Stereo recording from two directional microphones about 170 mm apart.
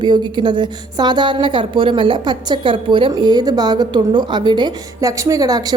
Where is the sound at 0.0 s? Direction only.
25° right (ahead or behind).